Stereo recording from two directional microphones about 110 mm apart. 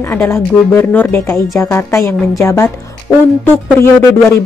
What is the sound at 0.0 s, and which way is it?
Speech, 25° left (ahead or behind).